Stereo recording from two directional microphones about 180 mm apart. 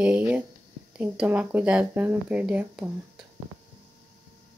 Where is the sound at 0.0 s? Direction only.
5° right (ahead or behind).